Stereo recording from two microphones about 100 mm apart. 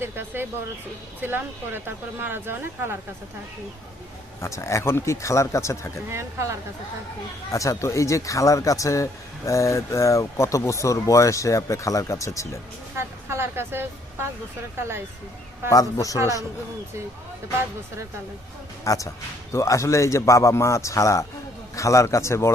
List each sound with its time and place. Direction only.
0.0 s speech: 20° right (ahead or behind)
4.4 s speech: 30° left (ahead or behind)
6.1 s speech: 25° right (ahead or behind)
7.5 s speech: 30° left (ahead or behind)
13.0 s a woman's voice: 25° right (ahead or behind)
15.7 s speech: 35° left (ahead or behind)
16.1 s speech: 30° right (ahead or behind)
18.9 s speech: 35° left (ahead or behind)